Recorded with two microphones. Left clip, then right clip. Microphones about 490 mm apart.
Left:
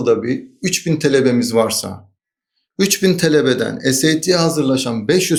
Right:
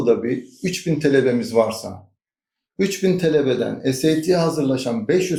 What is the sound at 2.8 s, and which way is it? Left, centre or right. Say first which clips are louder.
Speech: left 4 dB; left.